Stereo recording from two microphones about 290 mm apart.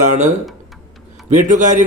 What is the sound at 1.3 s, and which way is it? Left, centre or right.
Speech, right.